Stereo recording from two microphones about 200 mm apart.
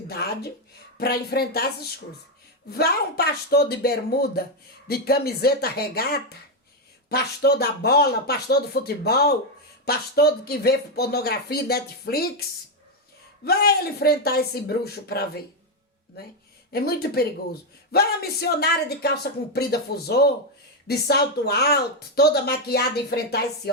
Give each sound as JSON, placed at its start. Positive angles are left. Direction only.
{"t": 0.1, "sound": "a man's voice", "side_deg": 50}
{"t": 13.4, "sound": "a man's voice", "side_deg": 50}
{"t": 16.7, "sound": "a man's voice", "side_deg": 50}